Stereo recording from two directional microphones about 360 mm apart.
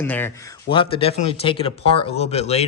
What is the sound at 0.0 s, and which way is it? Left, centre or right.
Speech, centre.